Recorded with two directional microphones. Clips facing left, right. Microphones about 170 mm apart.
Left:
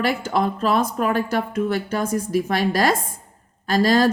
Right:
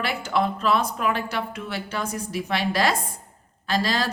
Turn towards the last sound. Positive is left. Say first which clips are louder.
# left 8 dB
turn(degrees=45)  # may be behind; listen again after turning